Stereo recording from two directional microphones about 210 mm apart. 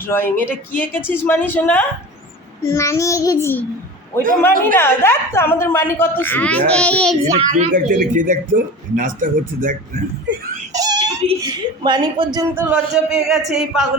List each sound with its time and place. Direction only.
0.1 s a woman's voice: 10° left (ahead or behind)
7.5 s speech: 35° right (ahead or behind)
10.7 s whimper: 15° right (ahead or behind)
11.2 s a man's voice: 25° right (ahead or behind); by 13.8 s centre (ahead or behind)